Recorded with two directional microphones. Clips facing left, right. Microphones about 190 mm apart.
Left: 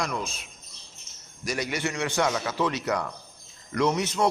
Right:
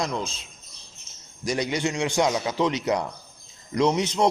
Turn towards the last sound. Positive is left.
turn(degrees=-20)  # may be behind; listen again after turning